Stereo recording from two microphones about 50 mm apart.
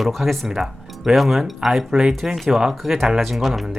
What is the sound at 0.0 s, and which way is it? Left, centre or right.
Speech, centre.